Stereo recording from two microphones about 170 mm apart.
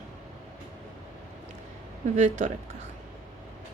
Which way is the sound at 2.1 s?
45° right (ahead or behind).